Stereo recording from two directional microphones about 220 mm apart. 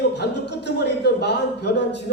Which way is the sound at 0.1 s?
50° left (ahead or behind).